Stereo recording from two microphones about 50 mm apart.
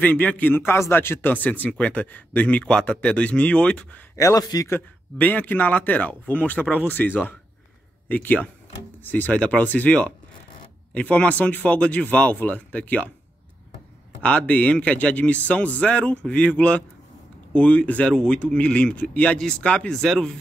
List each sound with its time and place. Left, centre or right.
0.0 s speech: left
0.6 s a man's voice: left
1.3 s a man's voice: left
4.2 s a man's voice: left
5.1 s speech: left
8.1 s a man's voice: left
14.2 s a man's voice: left
19.9 s speech: centre